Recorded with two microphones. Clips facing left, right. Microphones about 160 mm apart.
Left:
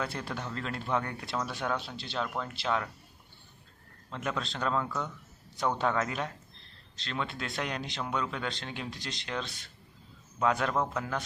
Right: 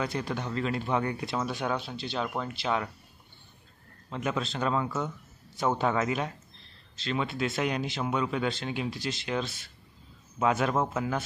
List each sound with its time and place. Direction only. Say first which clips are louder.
0.1 s speech: right 5 dB; centre (ahead or behind)
4.1 s a man's voice: right 4 dB; 5° right (ahead or behind)